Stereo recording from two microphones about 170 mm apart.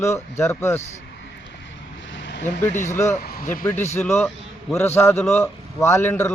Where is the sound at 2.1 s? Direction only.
90° left.